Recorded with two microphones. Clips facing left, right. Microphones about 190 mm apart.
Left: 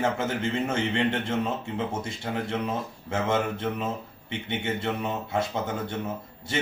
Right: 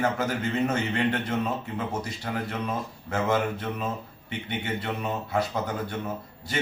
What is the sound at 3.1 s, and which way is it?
A man's voice, 25° left (ahead or behind).